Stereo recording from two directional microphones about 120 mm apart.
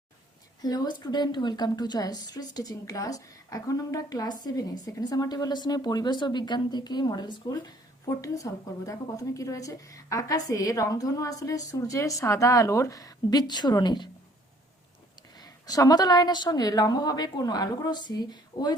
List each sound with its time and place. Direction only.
0.6 s a woman's voice: 35° left (ahead or behind)
15.4 s a woman's voice: 30° left (ahead or behind)